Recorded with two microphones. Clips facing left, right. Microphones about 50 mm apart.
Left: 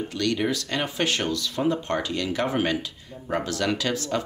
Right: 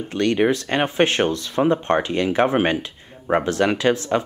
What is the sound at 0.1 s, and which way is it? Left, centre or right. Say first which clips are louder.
Speech: right 8 dB; right.